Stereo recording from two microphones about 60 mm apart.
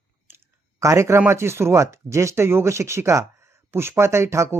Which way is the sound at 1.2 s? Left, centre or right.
Right.